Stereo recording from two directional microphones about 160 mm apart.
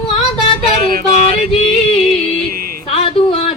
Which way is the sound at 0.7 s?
65° right (ahead or behind).